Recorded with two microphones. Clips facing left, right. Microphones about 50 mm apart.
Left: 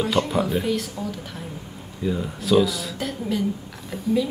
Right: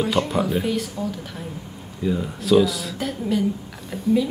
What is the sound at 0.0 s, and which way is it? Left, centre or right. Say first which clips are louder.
Speech: right 1 dB; centre.